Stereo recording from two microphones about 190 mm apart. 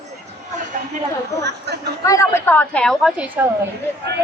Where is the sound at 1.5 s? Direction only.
60° right (ahead or behind).